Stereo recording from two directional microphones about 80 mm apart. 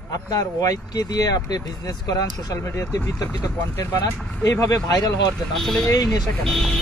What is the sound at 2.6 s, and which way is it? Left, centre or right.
Speech, left.